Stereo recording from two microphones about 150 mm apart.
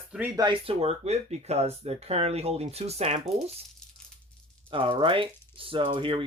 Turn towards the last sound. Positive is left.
turn(degrees=-35)  # may be behind; listen again after turning